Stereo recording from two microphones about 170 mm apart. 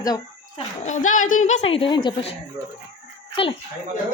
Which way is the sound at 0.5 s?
45° left (ahead or behind).